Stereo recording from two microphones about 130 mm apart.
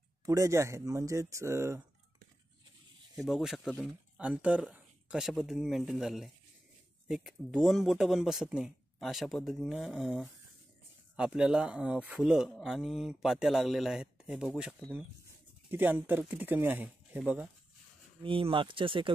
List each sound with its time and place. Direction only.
0.2 s speech: 25° right (ahead or behind)
3.2 s speech: centre (ahead or behind)
15.7 s speech: 15° right (ahead or behind)
18.2 s speech: 40° right (ahead or behind)